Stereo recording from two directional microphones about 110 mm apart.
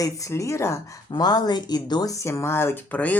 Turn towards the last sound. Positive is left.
turn(degrees=15)  # may be behind; listen again after turning